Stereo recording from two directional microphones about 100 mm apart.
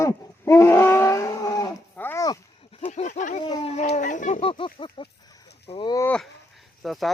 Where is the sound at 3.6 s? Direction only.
90° left.